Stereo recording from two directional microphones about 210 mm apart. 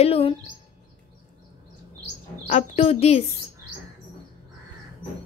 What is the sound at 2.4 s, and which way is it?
Speech, 35° left (ahead or behind).